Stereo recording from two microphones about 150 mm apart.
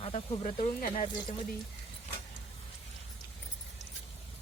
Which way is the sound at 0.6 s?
65° left (ahead or behind).